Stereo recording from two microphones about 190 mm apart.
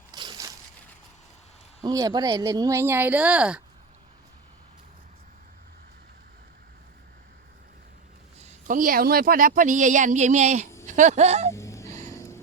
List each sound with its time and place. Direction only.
0.1 s crushing: 20° right (ahead or behind)
1.8 s speech: 20° right (ahead or behind)
8.6 s speech: 45° right (ahead or behind)
11.5 s a sound: 15° left (ahead or behind)